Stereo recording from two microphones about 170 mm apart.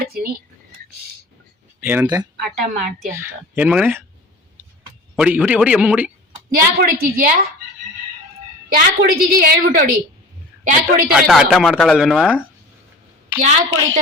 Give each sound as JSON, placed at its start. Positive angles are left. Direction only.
{"t": 0.0, "sound": "a sound", "side_deg": -60}
{"t": 1.8, "sound": "speech", "side_deg": -15}
{"t": 3.1, "sound": "speech", "side_deg": -15}
{"t": 5.1, "sound": "speech", "side_deg": -5}
{"t": 6.5, "sound": "a woman's voice", "side_deg": -60}
{"t": 8.7, "sound": "a woman's voice", "side_deg": -60}
{"t": 11.1, "sound": "speech", "side_deg": 0}
{"t": 13.3, "sound": "speech", "side_deg": -15}